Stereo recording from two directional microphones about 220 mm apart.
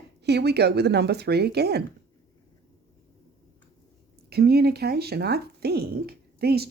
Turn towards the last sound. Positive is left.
turn(degrees=-45)  # may be behind; listen again after turning